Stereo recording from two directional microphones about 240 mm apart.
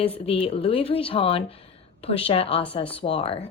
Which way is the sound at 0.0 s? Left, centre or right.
Left.